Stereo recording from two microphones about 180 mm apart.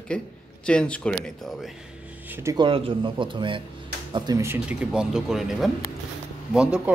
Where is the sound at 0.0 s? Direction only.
5° left (ahead or behind); by 2.5 s 10° right (ahead or behind).